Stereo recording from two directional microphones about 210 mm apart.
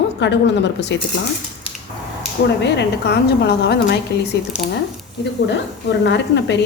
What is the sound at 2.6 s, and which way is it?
A woman's voice, 50° left (ahead or behind).